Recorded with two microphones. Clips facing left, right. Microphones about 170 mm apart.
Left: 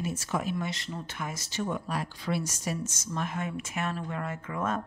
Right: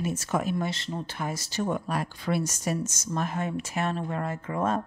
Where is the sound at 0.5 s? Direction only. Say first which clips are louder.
Right 4 dB; 30° right (ahead or behind).